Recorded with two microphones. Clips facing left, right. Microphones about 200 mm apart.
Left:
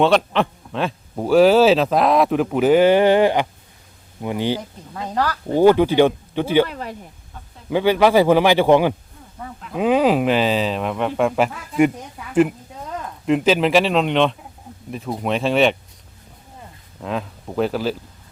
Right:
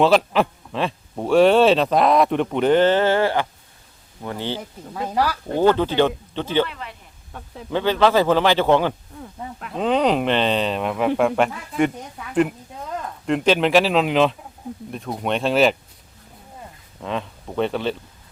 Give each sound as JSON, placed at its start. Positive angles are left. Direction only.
{"t": 0.0, "sound": "a man's voice", "side_deg": 0}
{"t": 4.9, "sound": "speech", "side_deg": -10}
{"t": 5.5, "sound": "a man's voice", "side_deg": 10}
{"t": 6.7, "sound": "speech", "side_deg": 40}
{"t": 7.3, "sound": "a sound", "side_deg": -65}
{"t": 7.7, "sound": "a man's voice", "side_deg": 10}
{"t": 17.0, "sound": "speech", "side_deg": 5}